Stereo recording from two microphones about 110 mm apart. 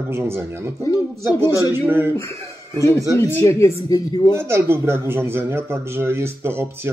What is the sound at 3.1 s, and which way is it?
Speech, 25° left (ahead or behind).